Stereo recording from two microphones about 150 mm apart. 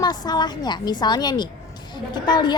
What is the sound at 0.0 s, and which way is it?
A woman's voice, 25° left (ahead or behind).